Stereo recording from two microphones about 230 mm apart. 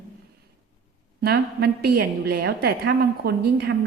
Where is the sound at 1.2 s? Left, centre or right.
Right.